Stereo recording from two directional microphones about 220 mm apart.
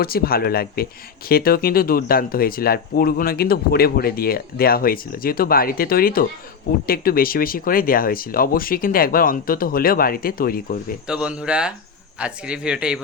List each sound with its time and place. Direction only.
0.0 s speech: 45° left (ahead or behind)
11.1 s speech: 5° right (ahead or behind)